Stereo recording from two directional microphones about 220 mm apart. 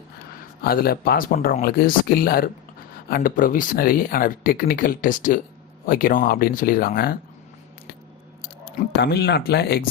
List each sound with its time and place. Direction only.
0.6 s speech: 45° left (ahead or behind)
8.9 s speech: 50° left (ahead or behind)